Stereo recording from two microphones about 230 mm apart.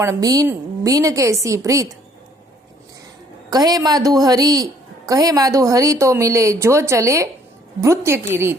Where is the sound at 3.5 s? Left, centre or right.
Centre.